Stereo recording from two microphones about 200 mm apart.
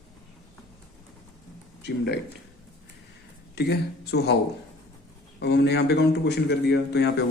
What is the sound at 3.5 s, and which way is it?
Speech, 55° left (ahead or behind).